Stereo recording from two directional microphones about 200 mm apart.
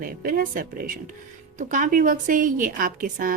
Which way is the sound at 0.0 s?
45° right (ahead or behind).